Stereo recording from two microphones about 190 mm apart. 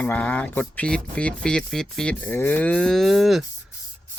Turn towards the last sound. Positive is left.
turn(degrees=0)  # may be behind; listen again after turning